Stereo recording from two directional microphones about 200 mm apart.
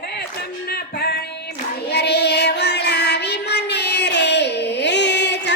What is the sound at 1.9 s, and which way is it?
Child singing, 55° left (ahead or behind).